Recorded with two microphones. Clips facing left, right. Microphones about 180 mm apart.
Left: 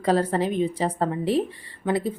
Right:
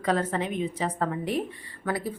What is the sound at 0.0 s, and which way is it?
A woman's voice, 35° left (ahead or behind).